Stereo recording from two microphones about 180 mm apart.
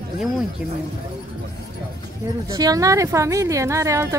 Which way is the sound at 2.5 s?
20° right (ahead or behind).